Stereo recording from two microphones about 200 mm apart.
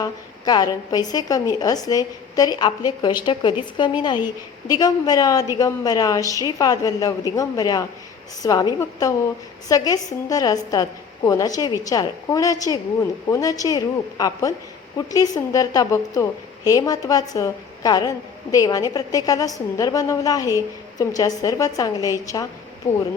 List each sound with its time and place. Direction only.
0.0 s a woman's voice: 20° left (ahead or behind)